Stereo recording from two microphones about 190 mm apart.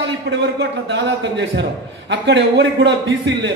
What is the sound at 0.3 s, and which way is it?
A man's voice, 65° right (ahead or behind).